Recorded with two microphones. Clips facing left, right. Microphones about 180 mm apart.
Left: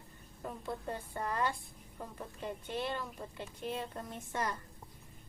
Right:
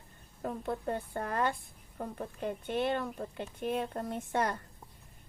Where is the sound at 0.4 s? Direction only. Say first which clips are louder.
Right 6 dB; 55° right (ahead or behind).